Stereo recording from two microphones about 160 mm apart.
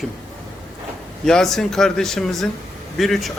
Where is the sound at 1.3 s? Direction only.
5° left (ahead or behind).